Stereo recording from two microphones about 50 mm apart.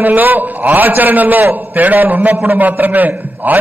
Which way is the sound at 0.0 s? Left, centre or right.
Right.